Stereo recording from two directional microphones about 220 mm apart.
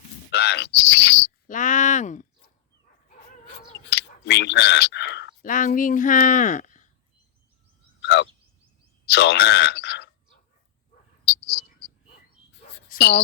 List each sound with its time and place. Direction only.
0.3 s bird: 50° left (ahead or behind)
3.8 s a sound: 50° left (ahead or behind)
5.4 s speech: 35° left (ahead or behind)
8.0 s a sound: 50° left (ahead or behind)
9.0 s bird: 50° left (ahead or behind)
12.9 s speech: 45° left (ahead or behind)